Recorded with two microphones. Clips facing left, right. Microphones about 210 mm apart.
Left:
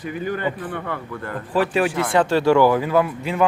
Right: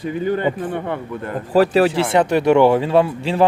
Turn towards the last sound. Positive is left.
turn(degrees=-30)  # may be behind; listen again after turning